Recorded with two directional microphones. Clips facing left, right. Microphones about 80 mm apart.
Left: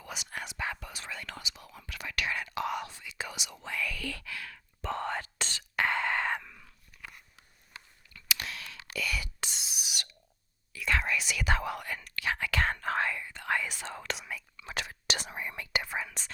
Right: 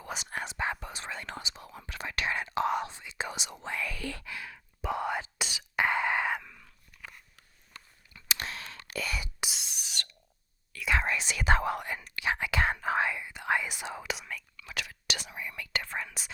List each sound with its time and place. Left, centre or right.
0.0 s whispering: right; by 6.3 s centre
6.3 s biting: centre
8.1 s whispering: right
9.1 s whispering: right
9.5 s a sound: centre
11.0 s whispering: right; by 14.2 s centre
14.2 s whispering: centre
14.5 s whispering: left
15.7 s whispering: centre